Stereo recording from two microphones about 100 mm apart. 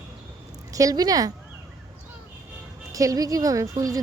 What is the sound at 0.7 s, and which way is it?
Speech, 35° right (ahead or behind).